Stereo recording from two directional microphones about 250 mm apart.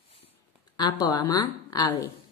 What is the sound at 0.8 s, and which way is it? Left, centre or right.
Speech, centre.